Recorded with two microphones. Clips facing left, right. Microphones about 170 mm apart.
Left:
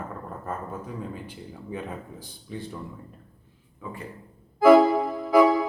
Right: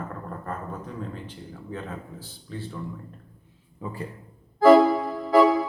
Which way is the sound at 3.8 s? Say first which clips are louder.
Right 3 dB; 35° right (ahead or behind).